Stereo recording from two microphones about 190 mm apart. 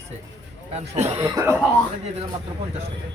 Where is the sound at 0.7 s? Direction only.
35° right (ahead or behind); by 1.6 s 15° right (ahead or behind).